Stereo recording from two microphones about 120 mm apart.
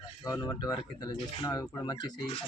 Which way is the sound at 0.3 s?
30° left (ahead or behind).